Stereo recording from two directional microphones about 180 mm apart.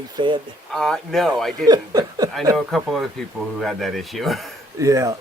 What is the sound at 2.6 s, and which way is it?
Speech, centre (ahead or behind).